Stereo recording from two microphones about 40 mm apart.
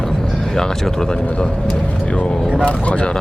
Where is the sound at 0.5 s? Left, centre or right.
Centre.